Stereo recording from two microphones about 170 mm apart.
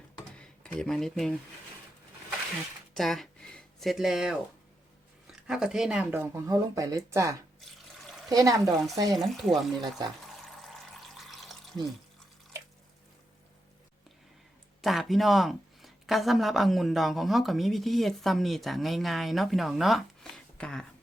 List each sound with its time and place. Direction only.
0.3 s speech: 5° left (ahead or behind)
2.9 s a sound: centre (ahead or behind)
5.5 s speech: 5° right (ahead or behind); by 8.6 s 20° right (ahead or behind)
9.1 s speech: centre (ahead or behind)
10.2 s water: centre (ahead or behind)
14.8 s speech: centre (ahead or behind)